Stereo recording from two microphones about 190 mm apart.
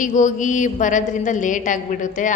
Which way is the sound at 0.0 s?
40° left (ahead or behind).